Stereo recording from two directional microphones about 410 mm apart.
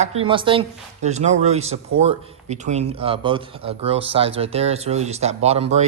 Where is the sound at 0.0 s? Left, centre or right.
Centre.